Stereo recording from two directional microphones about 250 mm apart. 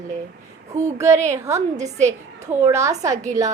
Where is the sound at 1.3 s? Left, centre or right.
Centre.